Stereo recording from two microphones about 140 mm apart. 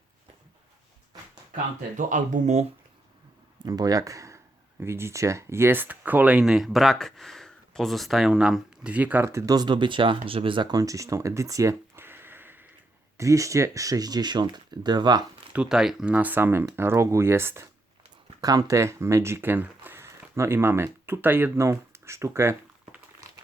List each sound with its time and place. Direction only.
2.0 s speech: 65° right (ahead or behind)
3.6 s speech: 30° right (ahead or behind)
15.5 s speech: 5° right (ahead or behind)